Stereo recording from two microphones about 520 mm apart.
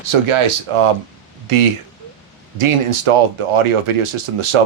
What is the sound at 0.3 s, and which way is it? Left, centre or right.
Speech, right.